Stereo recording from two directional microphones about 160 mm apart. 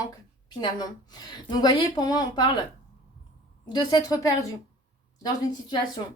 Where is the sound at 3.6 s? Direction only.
25° left (ahead or behind).